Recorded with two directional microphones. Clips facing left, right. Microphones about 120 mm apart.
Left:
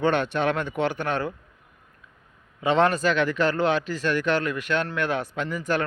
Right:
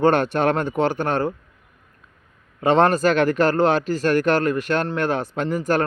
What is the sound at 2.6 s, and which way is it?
Speech, 40° right (ahead or behind).